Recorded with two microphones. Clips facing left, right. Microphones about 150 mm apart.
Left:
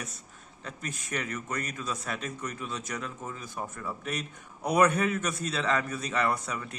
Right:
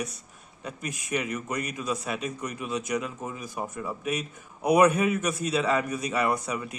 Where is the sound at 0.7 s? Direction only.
10° right (ahead or behind).